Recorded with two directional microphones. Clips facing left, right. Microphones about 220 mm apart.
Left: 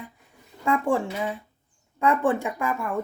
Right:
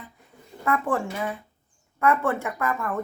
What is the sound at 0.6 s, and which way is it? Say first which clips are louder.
Speech: left 2 dB; 15° left (ahead or behind).